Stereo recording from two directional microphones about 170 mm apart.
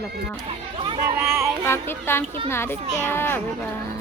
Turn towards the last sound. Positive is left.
turn(degrees=15)  # may be behind; listen again after turning